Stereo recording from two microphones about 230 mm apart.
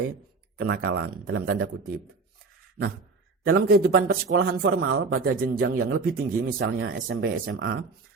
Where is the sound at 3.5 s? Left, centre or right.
Right.